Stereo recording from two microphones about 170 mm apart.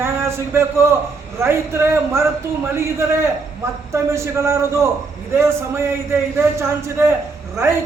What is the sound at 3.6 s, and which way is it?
A man's voice, 15° right (ahead or behind).